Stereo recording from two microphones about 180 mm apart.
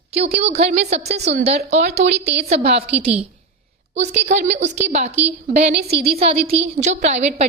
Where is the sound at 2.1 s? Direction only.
70° right (ahead or behind).